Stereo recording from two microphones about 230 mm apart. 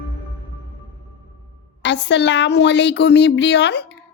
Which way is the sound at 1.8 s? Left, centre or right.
Left.